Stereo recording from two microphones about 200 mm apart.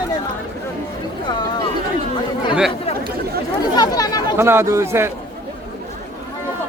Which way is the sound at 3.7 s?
20° left (ahead or behind).